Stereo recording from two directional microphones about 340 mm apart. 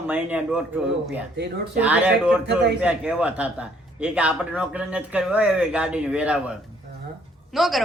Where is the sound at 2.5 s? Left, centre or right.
Right.